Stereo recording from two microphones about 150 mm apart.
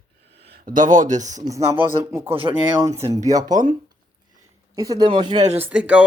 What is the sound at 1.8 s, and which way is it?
Speech, 15° right (ahead or behind).